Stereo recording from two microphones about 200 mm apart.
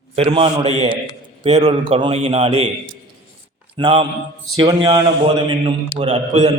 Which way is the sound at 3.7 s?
25° right (ahead or behind).